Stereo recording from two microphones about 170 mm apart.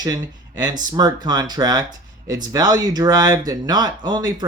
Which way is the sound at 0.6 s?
25° right (ahead or behind).